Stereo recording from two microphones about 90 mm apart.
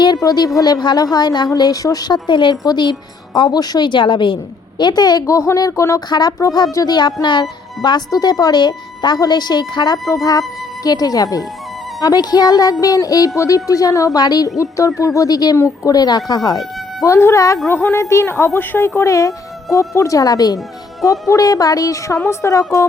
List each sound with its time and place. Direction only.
0.2 s a woman's voice: 45° left (ahead or behind); by 4.4 s 65° left (ahead or behind)
4.8 s a woman's voice: 50° left (ahead or behind); by 6.0 s 35° left (ahead or behind)
6.1 s a woman's voice: 55° left (ahead or behind)
14.6 s a woman's voice: 35° left (ahead or behind)
15.5 s a woman's voice: 30° left (ahead or behind)
15.9 s speech: 45° left (ahead or behind)
17.2 s a woman's voice: 35° left (ahead or behind)